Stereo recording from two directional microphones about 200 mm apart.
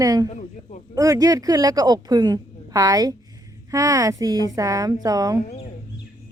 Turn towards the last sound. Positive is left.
turn(degrees=-20)  # may be behind; listen again after turning